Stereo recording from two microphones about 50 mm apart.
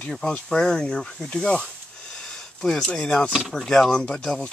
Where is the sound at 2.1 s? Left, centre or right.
Centre.